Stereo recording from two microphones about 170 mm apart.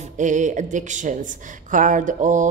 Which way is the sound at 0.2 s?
45° right (ahead or behind).